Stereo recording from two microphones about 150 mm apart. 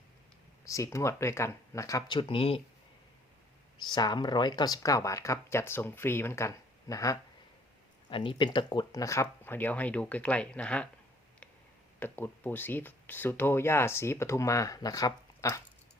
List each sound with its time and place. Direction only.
0.6 s speech: 20° left (ahead or behind); by 2.6 s 35° left (ahead or behind)
3.8 s speech: 30° left (ahead or behind)
8.1 s speech: 35° left (ahead or behind); by 10.8 s 10° left (ahead or behind)
11.9 s speech: 15° left (ahead or behind)